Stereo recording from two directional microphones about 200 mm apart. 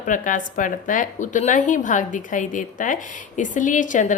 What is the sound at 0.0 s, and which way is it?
A woman's voice, 40° left (ahead or behind).